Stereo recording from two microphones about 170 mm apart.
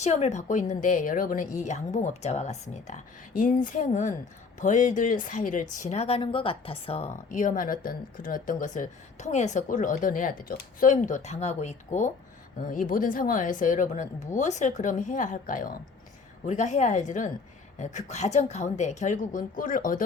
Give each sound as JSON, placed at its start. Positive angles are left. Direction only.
{"t": 0.0, "sound": "speech", "side_deg": 40}